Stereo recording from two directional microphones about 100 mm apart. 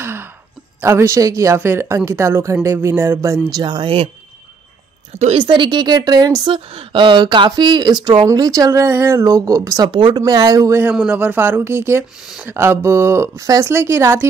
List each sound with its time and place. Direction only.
0.0 s a sound: 20° right (ahead or behind)
0.7 s speech: 30° right (ahead or behind); by 4.1 s 60° right (ahead or behind)
5.4 s speech: 50° right (ahead or behind)
6.4 s speech: 60° right (ahead or behind); by 9.8 s 35° right (ahead or behind)
9.8 s speech: 55° right (ahead or behind); by 10.8 s 35° right (ahead or behind)
10.9 s speech: 15° right (ahead or behind)